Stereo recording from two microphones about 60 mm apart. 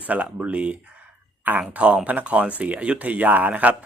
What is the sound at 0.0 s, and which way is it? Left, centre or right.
Speech, right.